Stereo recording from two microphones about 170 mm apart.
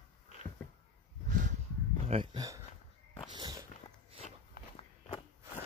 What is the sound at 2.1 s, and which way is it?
Speech, 30° right (ahead or behind).